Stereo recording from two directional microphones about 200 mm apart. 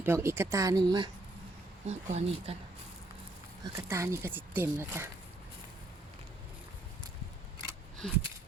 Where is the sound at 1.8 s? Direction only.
35° right (ahead or behind).